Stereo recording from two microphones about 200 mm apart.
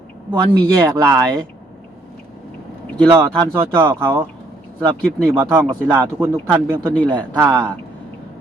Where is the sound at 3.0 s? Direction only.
25° right (ahead or behind).